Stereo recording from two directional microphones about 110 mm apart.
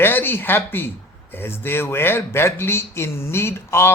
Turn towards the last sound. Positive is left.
turn(degrees=25)  # may be behind; listen again after turning